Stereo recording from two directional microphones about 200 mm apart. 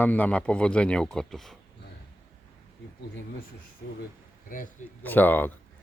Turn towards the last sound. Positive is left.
turn(degrees=10)  # may be behind; listen again after turning